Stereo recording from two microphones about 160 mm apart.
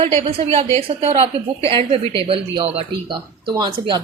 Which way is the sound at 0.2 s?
40° right (ahead or behind).